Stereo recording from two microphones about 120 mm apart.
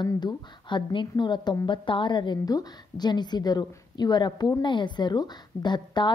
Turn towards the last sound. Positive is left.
turn(degrees=40)  # may be behind; listen again after turning